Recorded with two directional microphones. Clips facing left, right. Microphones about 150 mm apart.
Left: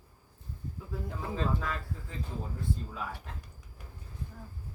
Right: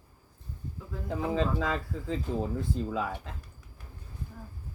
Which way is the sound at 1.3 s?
90° right.